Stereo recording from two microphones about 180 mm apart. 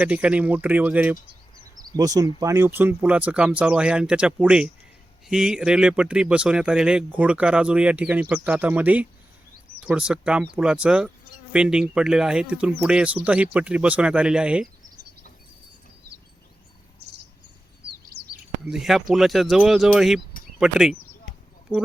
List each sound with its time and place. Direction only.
0.0 s speech: 5° right (ahead or behind)
1.9 s speech: 20° right (ahead or behind); by 14.7 s 5° right (ahead or behind)
18.6 s speech: 5° right (ahead or behind)